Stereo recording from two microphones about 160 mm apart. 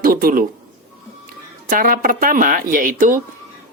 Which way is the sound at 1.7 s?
60° right (ahead or behind).